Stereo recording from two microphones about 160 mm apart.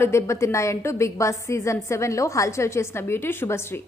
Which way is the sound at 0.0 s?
15° left (ahead or behind).